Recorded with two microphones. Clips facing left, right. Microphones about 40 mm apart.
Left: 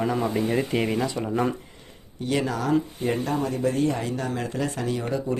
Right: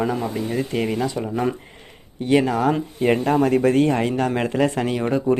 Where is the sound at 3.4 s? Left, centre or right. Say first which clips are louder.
Right 7 dB; right.